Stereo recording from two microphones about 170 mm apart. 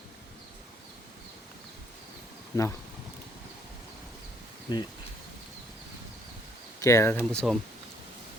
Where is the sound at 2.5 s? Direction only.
20° left (ahead or behind).